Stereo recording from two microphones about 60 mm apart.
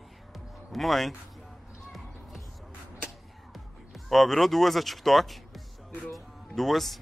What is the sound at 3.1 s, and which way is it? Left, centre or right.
Music, centre.